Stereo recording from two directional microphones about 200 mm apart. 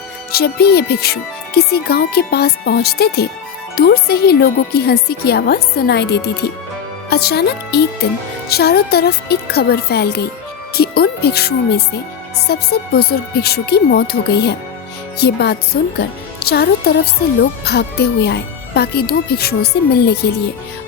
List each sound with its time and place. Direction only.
0.3 s speech: 50° left (ahead or behind)